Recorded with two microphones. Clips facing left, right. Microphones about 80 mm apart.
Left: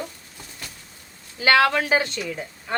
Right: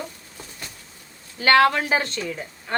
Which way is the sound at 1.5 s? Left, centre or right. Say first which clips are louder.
Right 1 dB; right.